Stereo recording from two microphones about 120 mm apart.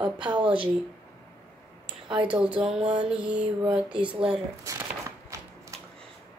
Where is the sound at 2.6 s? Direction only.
5° right (ahead or behind).